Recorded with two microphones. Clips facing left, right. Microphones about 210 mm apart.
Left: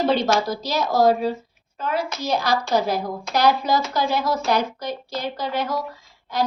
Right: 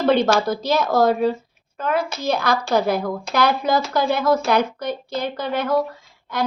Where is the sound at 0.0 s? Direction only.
55° right (ahead or behind).